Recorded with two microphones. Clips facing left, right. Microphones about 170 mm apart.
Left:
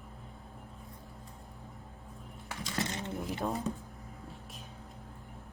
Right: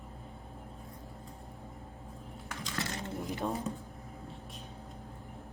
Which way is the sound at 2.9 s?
20° left (ahead or behind).